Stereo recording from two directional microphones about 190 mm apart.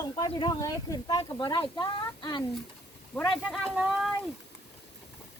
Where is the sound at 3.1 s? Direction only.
10° left (ahead or behind).